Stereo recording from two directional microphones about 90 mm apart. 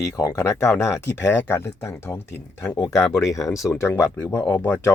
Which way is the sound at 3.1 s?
40° left (ahead or behind).